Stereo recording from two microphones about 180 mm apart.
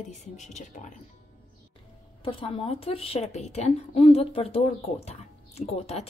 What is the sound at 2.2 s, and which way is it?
Speech, 30° left (ahead or behind).